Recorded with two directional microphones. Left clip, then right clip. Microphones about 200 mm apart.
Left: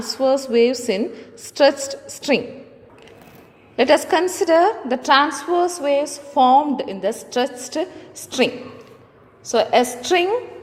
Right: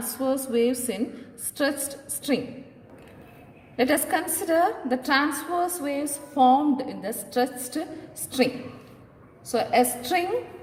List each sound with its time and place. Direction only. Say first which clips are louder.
0.2 s a woman's voice: left 8 dB; 25° left (ahead or behind)
3.8 s a woman's voice: left 8 dB; 25° left (ahead or behind)
9.5 s a woman's voice: left 6 dB; 25° left (ahead or behind)